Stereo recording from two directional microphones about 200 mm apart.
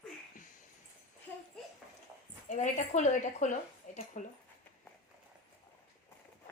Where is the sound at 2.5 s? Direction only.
40° left (ahead or behind).